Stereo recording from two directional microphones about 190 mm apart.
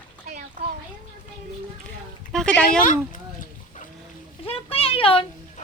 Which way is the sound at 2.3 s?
5° left (ahead or behind).